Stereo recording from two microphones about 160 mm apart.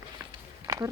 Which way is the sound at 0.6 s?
20° right (ahead or behind).